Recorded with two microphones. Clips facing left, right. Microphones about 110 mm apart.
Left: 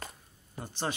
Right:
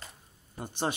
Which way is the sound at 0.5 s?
20° right (ahead or behind).